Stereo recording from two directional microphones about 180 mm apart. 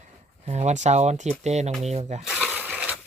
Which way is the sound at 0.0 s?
40° right (ahead or behind).